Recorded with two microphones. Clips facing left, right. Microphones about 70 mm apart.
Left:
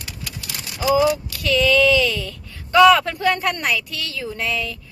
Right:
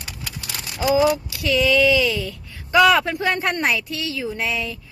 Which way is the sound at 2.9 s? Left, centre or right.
Centre.